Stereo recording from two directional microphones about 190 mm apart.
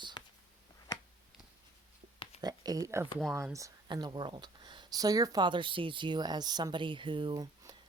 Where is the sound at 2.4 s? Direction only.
20° right (ahead or behind).